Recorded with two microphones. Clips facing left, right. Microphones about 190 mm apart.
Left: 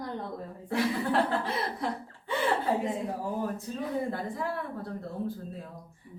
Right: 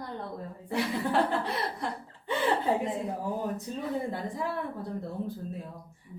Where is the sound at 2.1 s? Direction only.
20° right (ahead or behind).